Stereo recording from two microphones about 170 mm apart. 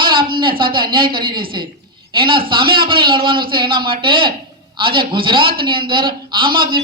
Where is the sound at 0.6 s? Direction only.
30° right (ahead or behind).